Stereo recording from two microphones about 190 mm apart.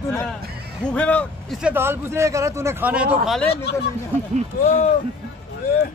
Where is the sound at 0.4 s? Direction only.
55° right (ahead or behind).